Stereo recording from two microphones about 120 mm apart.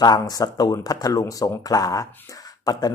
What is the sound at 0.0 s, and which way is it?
A man's voice, 35° left (ahead or behind).